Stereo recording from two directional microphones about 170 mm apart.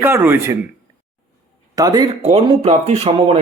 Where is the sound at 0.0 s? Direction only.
15° right (ahead or behind).